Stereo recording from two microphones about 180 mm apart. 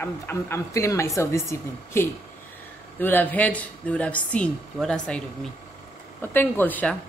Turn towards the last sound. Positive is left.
turn(degrees=10)  # may be behind; listen again after turning